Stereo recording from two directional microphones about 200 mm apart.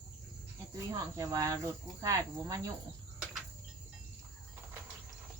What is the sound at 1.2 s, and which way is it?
Cricket, 15° right (ahead or behind).